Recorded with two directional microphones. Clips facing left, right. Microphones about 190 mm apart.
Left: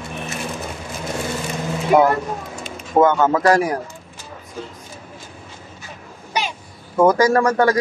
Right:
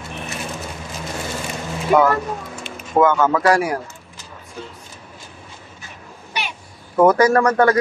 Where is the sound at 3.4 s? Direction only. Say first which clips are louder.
Left 1 dB; 40° left (ahead or behind).